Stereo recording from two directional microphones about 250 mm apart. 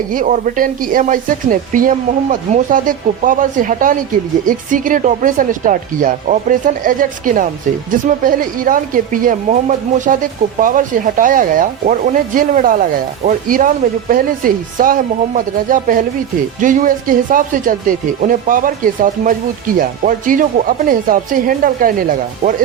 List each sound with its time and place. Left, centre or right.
0.1 s speech: right